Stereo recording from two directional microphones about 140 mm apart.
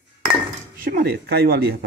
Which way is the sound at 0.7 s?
90° right.